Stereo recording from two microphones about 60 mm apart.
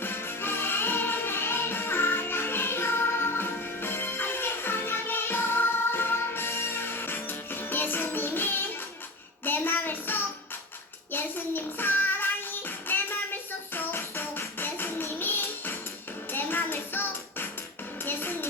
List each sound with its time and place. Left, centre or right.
0.0 s music: left
9.4 s child singing: left
12.9 s music: left